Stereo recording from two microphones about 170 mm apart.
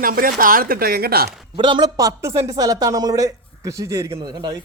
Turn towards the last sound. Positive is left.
turn(degrees=-25)  # may be behind; listen again after turning